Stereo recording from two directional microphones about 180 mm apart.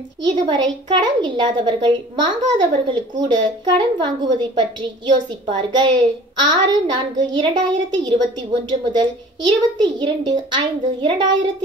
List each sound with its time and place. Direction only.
0.2 s a woman's voice: 25° right (ahead or behind)